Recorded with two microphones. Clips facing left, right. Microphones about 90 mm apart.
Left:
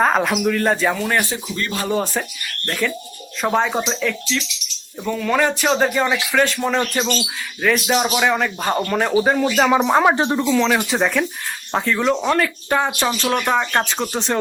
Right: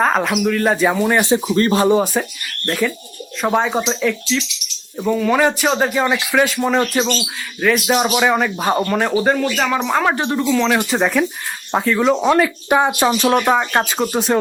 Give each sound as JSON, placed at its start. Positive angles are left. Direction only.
{"t": 0.0, "sound": "speech", "side_deg": 0}
{"t": 1.5, "sound": "speech", "side_deg": -35}
{"t": 1.9, "sound": "speech", "side_deg": -15}
{"t": 9.4, "sound": "speech", "side_deg": 15}
{"t": 10.5, "sound": "speech", "side_deg": 0}
{"t": 12.1, "sound": "speech", "side_deg": -15}